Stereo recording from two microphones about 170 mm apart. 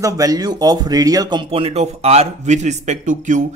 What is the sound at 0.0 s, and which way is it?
Speech, 20° right (ahead or behind).